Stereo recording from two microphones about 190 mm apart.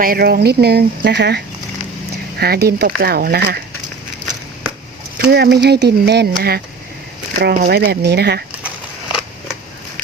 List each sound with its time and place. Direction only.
0.0 s speech: 50° right (ahead or behind)
2.4 s speech: 55° right (ahead or behind)
5.1 s speech: 60° right (ahead or behind)